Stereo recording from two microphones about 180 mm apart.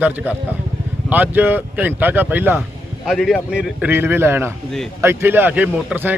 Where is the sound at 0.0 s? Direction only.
10° right (ahead or behind).